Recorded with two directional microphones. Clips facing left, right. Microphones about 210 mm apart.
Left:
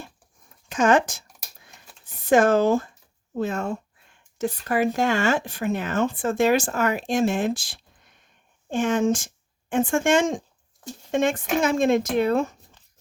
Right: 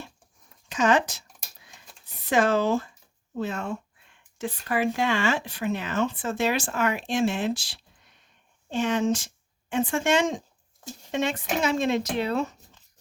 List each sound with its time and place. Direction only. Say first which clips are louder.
0.7 s speech: left 3 dB; 50° left (ahead or behind)
2.2 s speech: left 5 dB; 50° left (ahead or behind)